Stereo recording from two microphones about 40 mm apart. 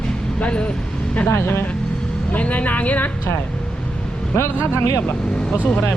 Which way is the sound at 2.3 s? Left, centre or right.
Left.